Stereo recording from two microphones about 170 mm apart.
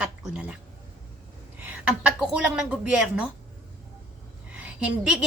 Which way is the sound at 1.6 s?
5° right (ahead or behind).